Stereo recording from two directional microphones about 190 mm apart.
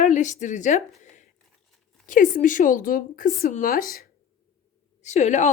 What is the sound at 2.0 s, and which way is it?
A woman's voice, 45° left (ahead or behind).